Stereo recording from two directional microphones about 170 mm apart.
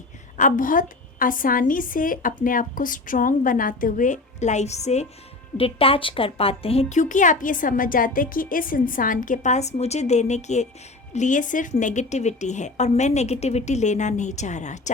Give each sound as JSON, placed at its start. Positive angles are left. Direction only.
{"t": 0.3, "sound": "a woman's voice", "side_deg": 50}